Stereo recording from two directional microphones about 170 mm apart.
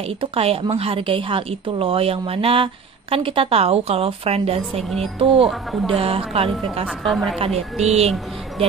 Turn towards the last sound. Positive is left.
turn(degrees=0)  # may be behind; listen again after turning